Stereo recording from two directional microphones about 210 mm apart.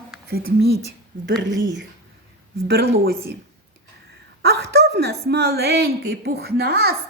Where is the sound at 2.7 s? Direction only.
50° right (ahead or behind).